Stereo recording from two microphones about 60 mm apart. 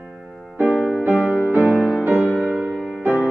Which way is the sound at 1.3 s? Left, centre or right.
Right.